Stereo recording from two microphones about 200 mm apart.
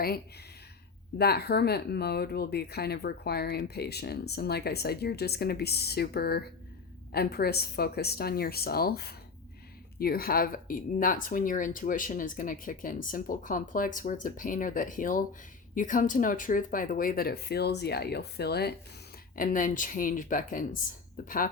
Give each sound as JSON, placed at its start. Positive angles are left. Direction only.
{"t": 1.2, "sound": "speech", "side_deg": 50}
{"t": 19.4, "sound": "speech", "side_deg": 45}